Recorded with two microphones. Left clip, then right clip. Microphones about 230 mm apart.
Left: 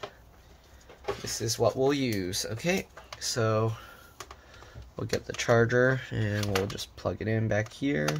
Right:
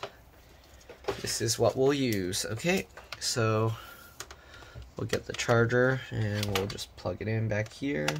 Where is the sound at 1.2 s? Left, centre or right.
Centre; by 8.0 s left.